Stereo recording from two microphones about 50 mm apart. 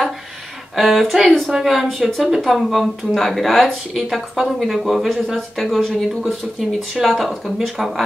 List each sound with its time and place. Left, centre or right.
0.7 s speech: centre
1.2 s speech: centre
1.6 s speech: centre